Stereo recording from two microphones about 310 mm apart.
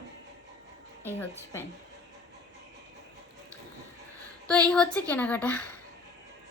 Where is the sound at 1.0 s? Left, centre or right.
Centre.